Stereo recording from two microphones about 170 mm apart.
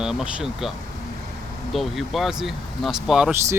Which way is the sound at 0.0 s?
5° right (ahead or behind).